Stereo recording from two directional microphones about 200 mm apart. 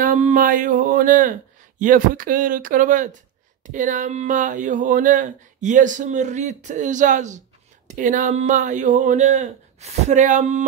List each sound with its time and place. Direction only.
0.0 s speech: 40° right (ahead or behind)